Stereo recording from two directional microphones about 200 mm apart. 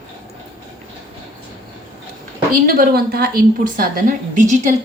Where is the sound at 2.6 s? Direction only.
45° right (ahead or behind).